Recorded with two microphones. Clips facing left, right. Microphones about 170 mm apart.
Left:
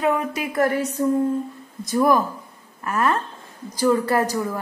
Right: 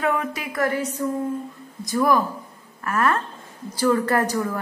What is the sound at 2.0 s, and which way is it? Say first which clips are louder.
A woman's voice: left 2 dB; 20° left (ahead or behind).